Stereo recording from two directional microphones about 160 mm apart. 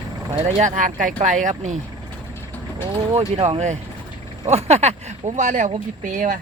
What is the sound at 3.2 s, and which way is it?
Speech, 35° right (ahead or behind).